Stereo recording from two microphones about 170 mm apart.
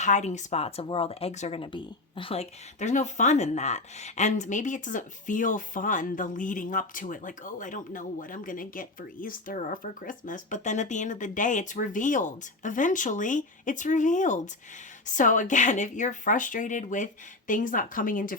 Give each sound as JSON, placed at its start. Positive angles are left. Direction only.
{"t": 0.0, "sound": "speech", "side_deg": 45}